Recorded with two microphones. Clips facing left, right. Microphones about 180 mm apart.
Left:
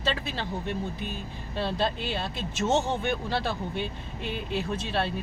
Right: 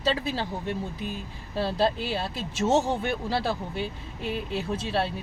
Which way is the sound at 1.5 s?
5° right (ahead or behind).